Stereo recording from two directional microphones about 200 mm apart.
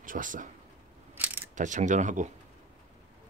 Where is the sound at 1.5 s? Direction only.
40° right (ahead or behind).